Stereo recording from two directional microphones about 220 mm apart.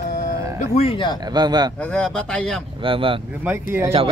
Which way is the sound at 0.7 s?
25° left (ahead or behind).